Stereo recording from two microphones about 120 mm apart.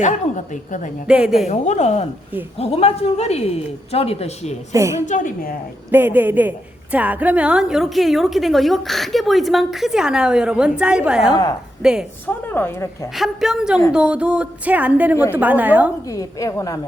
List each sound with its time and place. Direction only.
0.0 s a woman's voice: 90° left
1.0 s a woman's voice: 10° right (ahead or behind)
1.5 s a woman's voice: 75° left (ahead or behind); by 4.5 s 55° left (ahead or behind)
4.7 s a woman's voice: 25° right (ahead or behind)
5.0 s a woman's voice: 90° left
5.9 s a woman's voice: 15° right (ahead or behind)
12.2 s a woman's voice: 15° left (ahead or behind)
13.1 s a woman's voice: centre (ahead or behind)
16.0 s a woman's voice: 25° left (ahead or behind)